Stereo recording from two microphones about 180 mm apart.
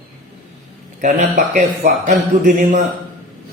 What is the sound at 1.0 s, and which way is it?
Speech, 45° right (ahead or behind).